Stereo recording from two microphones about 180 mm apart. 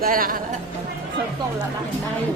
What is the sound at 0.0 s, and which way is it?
Speech, 50° right (ahead or behind).